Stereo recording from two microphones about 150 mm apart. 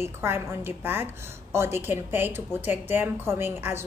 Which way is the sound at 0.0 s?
15° right (ahead or behind).